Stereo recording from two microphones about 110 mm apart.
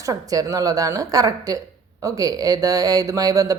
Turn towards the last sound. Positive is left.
turn(degrees=-30)  # may be behind; listen again after turning